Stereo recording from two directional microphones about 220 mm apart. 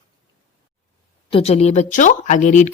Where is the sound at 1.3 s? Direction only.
25° left (ahead or behind).